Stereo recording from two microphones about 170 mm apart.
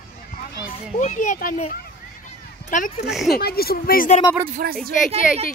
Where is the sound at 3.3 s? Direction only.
65° left (ahead or behind).